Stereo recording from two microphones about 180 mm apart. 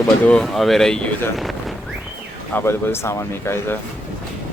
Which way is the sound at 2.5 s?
10° left (ahead or behind).